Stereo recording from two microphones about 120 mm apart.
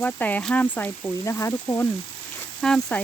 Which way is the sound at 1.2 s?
25° left (ahead or behind).